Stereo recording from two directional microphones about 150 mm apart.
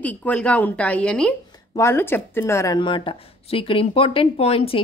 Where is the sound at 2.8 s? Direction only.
35° left (ahead or behind).